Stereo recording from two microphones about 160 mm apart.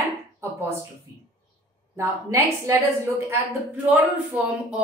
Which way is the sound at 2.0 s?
15° right (ahead or behind).